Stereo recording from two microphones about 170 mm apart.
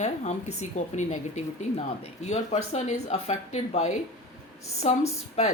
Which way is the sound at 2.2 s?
40° left (ahead or behind).